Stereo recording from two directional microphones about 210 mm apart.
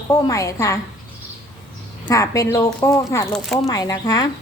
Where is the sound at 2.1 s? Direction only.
15° left (ahead or behind).